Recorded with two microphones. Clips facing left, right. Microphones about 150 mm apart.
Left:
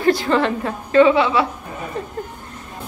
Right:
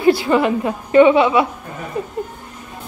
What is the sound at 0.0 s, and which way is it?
A woman's voice, 10° right (ahead or behind).